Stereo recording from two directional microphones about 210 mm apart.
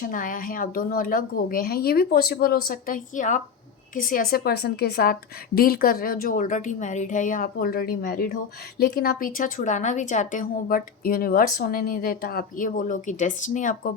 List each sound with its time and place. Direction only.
0.0 s a woman's voice: 40° left (ahead or behind)